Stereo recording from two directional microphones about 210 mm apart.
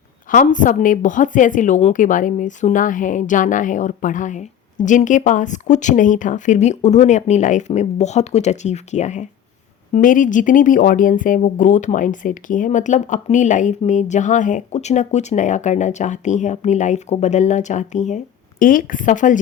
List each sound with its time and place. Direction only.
0.3 s speech: 40° left (ahead or behind)